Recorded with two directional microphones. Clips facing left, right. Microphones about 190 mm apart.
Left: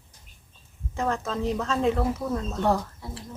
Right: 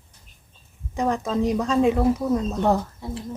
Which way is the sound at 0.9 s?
15° right (ahead or behind).